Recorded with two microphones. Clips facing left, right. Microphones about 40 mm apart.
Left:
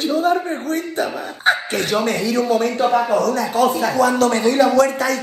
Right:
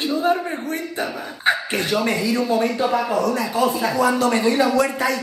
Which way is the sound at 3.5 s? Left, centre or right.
Left.